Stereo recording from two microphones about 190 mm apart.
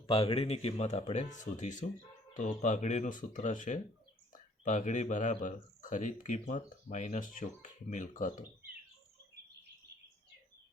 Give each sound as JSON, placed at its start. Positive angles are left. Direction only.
{"t": 0.1, "sound": "speech", "side_deg": 30}